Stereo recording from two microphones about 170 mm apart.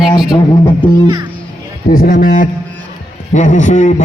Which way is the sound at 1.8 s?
55° left (ahead or behind).